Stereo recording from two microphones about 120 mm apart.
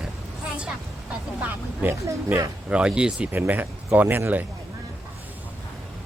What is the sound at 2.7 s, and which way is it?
Speech, 5° right (ahead or behind).